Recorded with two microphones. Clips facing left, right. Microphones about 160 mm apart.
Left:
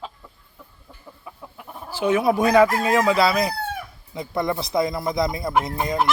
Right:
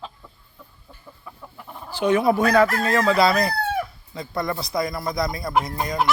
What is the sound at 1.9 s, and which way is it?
Speech, 5° left (ahead or behind).